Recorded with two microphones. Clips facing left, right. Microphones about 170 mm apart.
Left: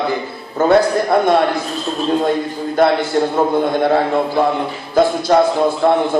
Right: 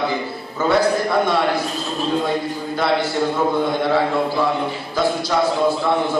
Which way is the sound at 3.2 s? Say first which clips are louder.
Left 4 dB; 50° left (ahead or behind).